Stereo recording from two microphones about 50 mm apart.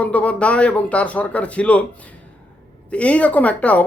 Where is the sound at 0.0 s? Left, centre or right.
Left.